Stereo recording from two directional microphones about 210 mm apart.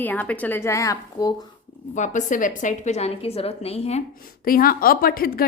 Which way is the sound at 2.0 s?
35° left (ahead or behind).